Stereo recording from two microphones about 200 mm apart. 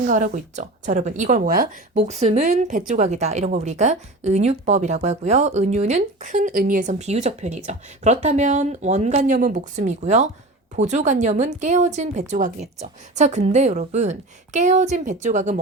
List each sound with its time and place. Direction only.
0.0 s speech: 40° right (ahead or behind)
2.0 s speech: 35° right (ahead or behind)